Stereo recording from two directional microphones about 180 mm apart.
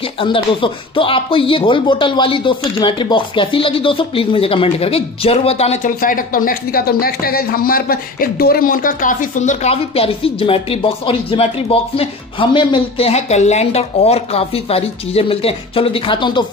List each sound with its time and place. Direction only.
0.2 s speech: 30° left (ahead or behind)